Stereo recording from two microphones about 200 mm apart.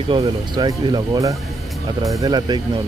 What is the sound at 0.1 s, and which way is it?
Speech, 25° right (ahead or behind).